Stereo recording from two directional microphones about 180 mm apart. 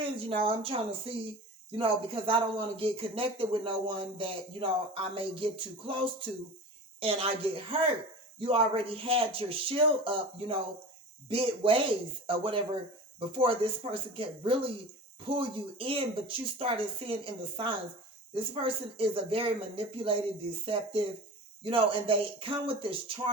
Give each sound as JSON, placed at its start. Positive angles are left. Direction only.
{"t": 0.0, "sound": "speech", "side_deg": -30}